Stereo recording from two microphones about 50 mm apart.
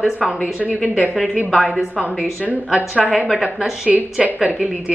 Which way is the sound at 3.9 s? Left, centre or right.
Centre.